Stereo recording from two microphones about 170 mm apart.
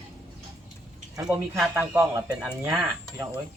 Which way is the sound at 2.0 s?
15° right (ahead or behind).